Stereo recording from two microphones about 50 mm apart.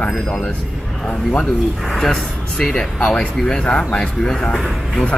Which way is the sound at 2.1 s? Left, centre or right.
Centre.